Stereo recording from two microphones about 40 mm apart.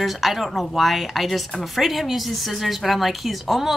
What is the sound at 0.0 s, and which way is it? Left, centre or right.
A woman's voice, centre.